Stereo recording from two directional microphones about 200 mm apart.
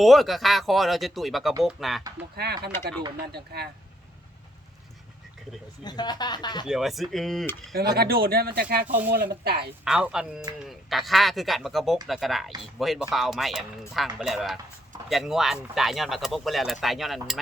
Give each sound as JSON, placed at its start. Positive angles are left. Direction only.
{"t": 0.0, "sound": "speech", "side_deg": 0}
{"t": 2.3, "sound": "speech", "side_deg": -55}
{"t": 5.8, "sound": "speech", "side_deg": 20}
{"t": 6.7, "sound": "speech", "side_deg": 0}
{"t": 7.9, "sound": "speech", "side_deg": -50}
{"t": 9.8, "sound": "speech", "side_deg": -5}